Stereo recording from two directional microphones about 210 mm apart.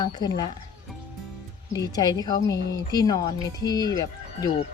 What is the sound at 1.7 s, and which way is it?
A woman's voice, 15° left (ahead or behind).